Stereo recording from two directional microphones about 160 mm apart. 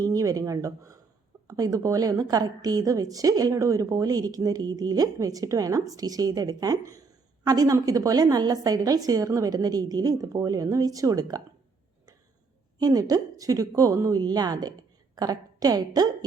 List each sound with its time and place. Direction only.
0.0 s a woman's voice: 20° right (ahead or behind)
12.8 s a woman's voice: 25° right (ahead or behind)